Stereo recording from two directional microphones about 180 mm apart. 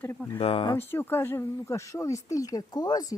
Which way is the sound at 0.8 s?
10° left (ahead or behind).